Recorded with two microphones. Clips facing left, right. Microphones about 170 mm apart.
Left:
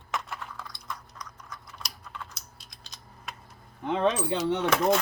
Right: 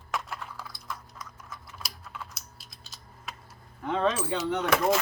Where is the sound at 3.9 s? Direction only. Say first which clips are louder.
Left 1 dB; 15° left (ahead or behind).